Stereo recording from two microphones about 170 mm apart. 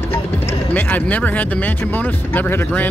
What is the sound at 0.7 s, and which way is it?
Speech, 10° left (ahead or behind).